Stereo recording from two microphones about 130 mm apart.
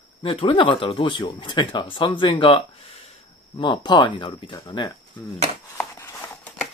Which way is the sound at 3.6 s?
35° left (ahead or behind).